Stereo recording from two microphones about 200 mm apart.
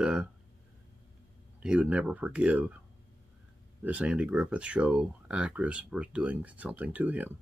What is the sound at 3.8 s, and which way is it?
Speech, 5° right (ahead or behind).